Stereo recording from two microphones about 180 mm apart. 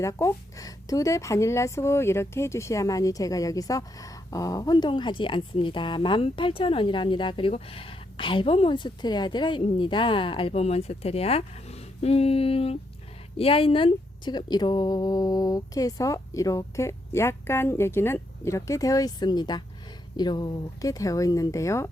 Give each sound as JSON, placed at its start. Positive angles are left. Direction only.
{"t": 0.0, "sound": "a woman's voice", "side_deg": 15}